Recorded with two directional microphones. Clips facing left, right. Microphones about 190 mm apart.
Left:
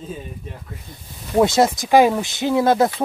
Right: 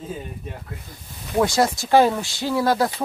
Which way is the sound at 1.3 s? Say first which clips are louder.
Left 4 dB; 20° left (ahead or behind).